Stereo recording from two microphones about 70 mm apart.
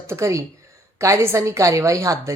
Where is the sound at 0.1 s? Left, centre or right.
Right.